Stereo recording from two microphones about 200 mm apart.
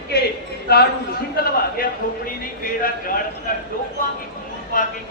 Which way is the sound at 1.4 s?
50° left (ahead or behind).